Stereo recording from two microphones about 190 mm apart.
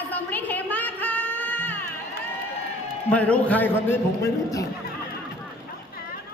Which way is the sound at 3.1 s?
5° left (ahead or behind).